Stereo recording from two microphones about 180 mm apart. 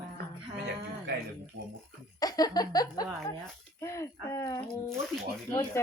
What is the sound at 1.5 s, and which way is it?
Speech, 90° right.